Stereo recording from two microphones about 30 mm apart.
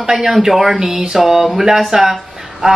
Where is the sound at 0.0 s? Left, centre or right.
Centre.